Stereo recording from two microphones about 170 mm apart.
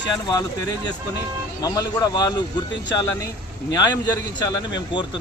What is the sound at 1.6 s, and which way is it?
Speech, 20° left (ahead or behind).